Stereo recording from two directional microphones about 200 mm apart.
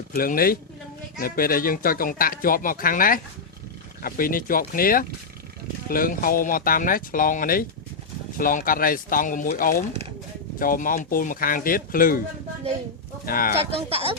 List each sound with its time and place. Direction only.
0.1 s speech: 45° left (ahead or behind)
13.2 s speech: 45° left (ahead or behind)
13.6 s speech: 30° right (ahead or behind)